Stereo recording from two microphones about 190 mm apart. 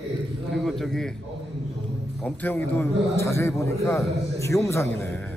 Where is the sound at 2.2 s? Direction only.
10° left (ahead or behind).